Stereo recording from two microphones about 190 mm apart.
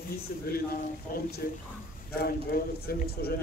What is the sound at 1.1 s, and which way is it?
Speech, 50° left (ahead or behind).